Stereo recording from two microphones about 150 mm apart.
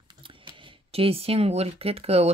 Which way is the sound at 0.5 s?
40° right (ahead or behind).